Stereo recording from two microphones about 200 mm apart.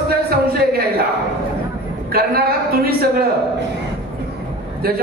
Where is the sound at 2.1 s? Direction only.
50° right (ahead or behind).